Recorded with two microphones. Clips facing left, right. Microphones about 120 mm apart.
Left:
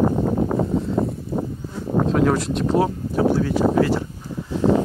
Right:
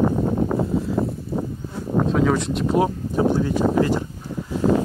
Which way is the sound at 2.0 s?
Centre (ahead or behind).